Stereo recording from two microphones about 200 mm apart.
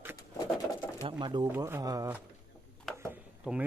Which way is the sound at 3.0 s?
10° right (ahead or behind).